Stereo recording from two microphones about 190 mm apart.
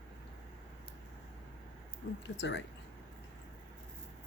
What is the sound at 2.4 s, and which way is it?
Speech, 70° left (ahead or behind).